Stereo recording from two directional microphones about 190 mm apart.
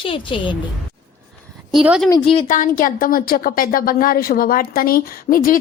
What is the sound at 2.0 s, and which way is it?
Speech, 20° left (ahead or behind).